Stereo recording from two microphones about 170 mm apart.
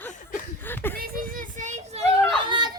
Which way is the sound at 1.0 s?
55° right (ahead or behind).